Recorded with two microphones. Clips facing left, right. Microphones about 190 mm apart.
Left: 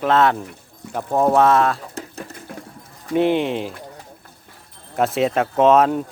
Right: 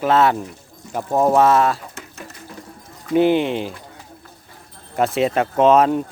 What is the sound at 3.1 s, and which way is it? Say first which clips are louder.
Speech: right 2 dB; centre (ahead or behind).